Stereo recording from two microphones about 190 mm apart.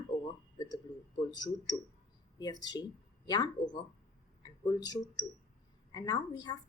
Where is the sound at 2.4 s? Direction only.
20° left (ahead or behind).